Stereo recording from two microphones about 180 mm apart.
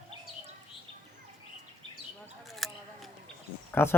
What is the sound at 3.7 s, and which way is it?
Speech, 15° left (ahead or behind).